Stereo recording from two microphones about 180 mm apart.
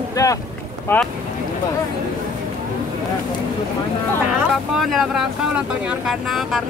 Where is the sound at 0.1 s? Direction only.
20° left (ahead or behind).